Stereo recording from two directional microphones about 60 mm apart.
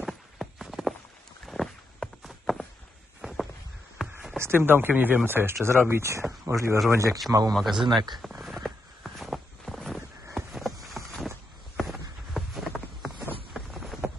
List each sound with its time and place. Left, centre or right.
0.0 s clip-clop: centre
1.4 s rowboat: centre
2.2 s walk: centre
3.2 s a sound: centre
4.4 s speech: right
7.2 s a man's voice: right
7.5 s speech: centre
8.4 s a sound: centre
11.1 s walk: centre
12.4 s a sound: centre